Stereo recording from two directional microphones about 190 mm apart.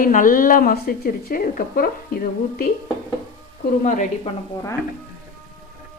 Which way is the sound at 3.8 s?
40° left (ahead or behind).